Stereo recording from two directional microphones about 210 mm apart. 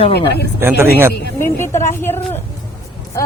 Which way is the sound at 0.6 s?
10° right (ahead or behind).